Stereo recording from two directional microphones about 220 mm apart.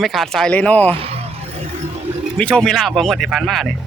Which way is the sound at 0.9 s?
25° right (ahead or behind).